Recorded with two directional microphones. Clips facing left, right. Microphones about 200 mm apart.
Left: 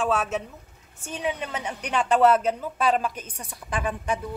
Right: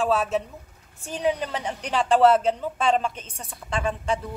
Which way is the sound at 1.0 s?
35° right (ahead or behind).